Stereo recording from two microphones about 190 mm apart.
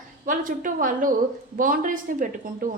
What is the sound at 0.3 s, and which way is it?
A woman's voice, 45° right (ahead or behind).